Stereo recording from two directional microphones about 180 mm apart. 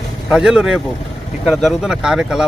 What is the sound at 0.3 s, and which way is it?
Speech, 5° right (ahead or behind).